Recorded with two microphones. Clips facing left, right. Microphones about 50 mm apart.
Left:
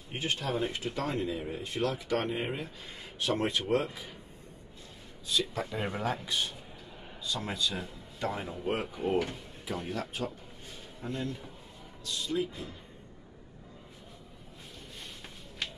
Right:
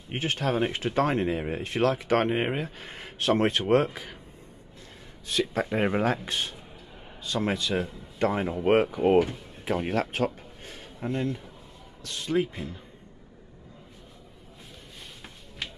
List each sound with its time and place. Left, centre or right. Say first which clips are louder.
0.1 s speech: right 5 dB; right
5.2 s a man's voice: right 5 dB; right
11.1 s a man's voice: right 7 dB; right
12.0 s speech: right 5 dB; right